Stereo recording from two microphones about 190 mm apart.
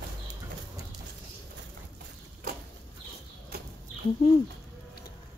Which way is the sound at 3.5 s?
55° right (ahead or behind).